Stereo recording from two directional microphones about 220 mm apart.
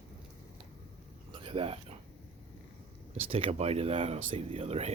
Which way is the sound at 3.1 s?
25° right (ahead or behind).